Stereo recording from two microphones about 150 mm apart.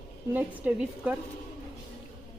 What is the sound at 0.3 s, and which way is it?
Speech, 10° right (ahead or behind).